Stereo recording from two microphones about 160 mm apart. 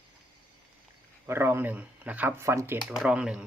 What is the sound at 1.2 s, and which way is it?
Speech, 15° right (ahead or behind).